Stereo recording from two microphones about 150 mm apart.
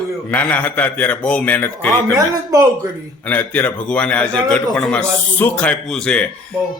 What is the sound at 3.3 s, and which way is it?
A man's voice, 10° left (ahead or behind).